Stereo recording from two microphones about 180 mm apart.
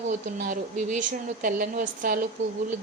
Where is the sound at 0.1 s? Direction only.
45° right (ahead or behind).